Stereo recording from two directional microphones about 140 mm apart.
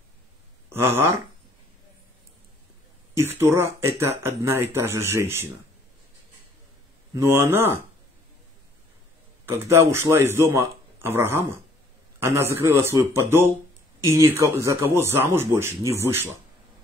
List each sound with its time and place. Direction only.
0.7 s speech: 15° right (ahead or behind)
3.2 s speech: 15° right (ahead or behind)
7.2 s speech: 15° right (ahead or behind)
9.7 s speech: 20° right (ahead or behind)